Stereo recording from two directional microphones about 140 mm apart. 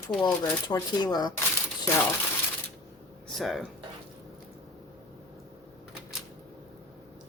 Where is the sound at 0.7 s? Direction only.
30° left (ahead or behind).